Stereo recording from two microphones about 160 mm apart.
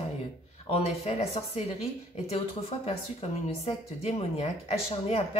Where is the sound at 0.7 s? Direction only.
40° left (ahead or behind).